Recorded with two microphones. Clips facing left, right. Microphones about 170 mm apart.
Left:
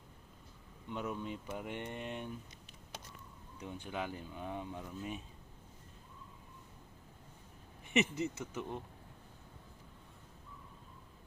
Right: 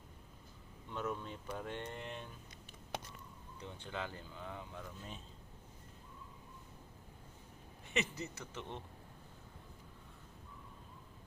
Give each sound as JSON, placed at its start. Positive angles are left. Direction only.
{"t": 0.9, "sound": "speech", "side_deg": 15}
{"t": 2.9, "sound": "a sound", "side_deg": -60}
{"t": 3.6, "sound": "speech", "side_deg": 10}
{"t": 7.9, "sound": "speech", "side_deg": 20}